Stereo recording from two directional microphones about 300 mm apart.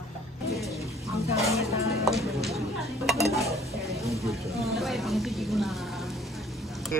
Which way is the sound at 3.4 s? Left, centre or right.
Centre.